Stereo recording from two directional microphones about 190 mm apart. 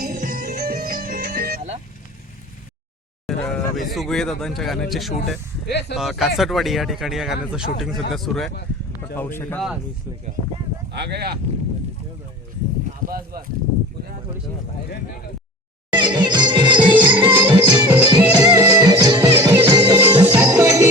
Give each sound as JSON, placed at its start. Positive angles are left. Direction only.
{"t": 0.0, "sound": "music", "side_deg": -45}
{"t": 3.2, "sound": "a sound", "side_deg": 0}
{"t": 3.9, "sound": "speech", "side_deg": 0}
{"t": 5.6, "sound": "speech", "side_deg": 60}
{"t": 6.0, "sound": "speech", "side_deg": 0}
{"t": 10.9, "sound": "speech", "side_deg": -60}
{"t": 13.1, "sound": "speech", "side_deg": -50}
{"t": 15.9, "sound": "music", "side_deg": -25}
{"t": 17.9, "sound": "music", "side_deg": -10}
{"t": 18.9, "sound": "music", "side_deg": -20}
{"t": 20.6, "sound": "jingle bell", "side_deg": -15}